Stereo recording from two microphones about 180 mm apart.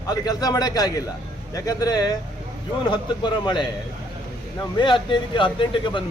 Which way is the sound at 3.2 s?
25° left (ahead or behind).